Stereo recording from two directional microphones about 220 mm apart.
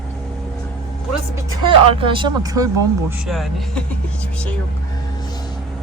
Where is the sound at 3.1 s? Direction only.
Centre (ahead or behind).